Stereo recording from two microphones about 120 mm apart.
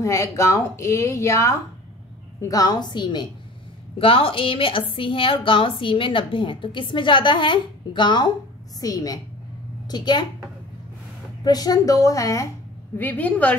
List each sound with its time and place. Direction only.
0.0 s a woman's voice: 25° left (ahead or behind)
11.4 s speech: 35° left (ahead or behind)
12.9 s a woman's voice: 15° left (ahead or behind)